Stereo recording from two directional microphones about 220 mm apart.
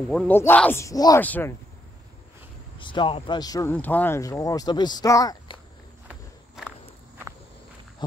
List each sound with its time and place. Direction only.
0.1 s speech: 5° left (ahead or behind)
2.8 s speech: 20° left (ahead or behind)
6.0 s walk: 5° right (ahead or behind)